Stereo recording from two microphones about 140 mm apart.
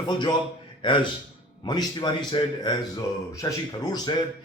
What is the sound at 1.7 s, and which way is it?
A man's voice, 30° left (ahead or behind).